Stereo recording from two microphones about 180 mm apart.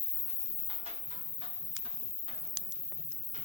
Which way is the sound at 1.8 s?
30° right (ahead or behind).